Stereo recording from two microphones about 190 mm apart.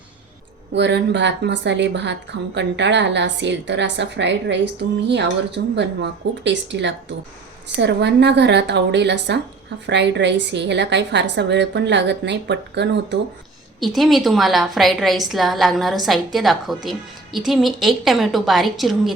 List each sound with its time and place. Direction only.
0.7 s a woman's voice: 65° right (ahead or behind)
13.7 s a woman's voice: centre (ahead or behind)